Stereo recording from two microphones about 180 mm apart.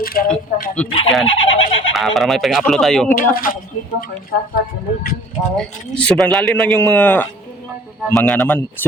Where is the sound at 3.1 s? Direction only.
50° left (ahead or behind).